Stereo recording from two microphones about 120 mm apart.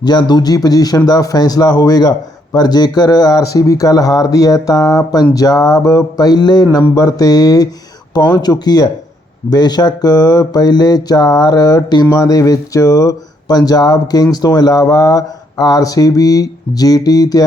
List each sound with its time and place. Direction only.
0.0 s a man's voice: 35° left (ahead or behind)